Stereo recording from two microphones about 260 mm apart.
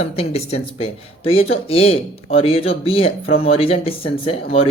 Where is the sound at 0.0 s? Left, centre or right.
Left.